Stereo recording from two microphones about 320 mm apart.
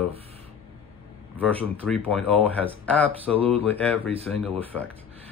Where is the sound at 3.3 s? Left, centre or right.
Centre.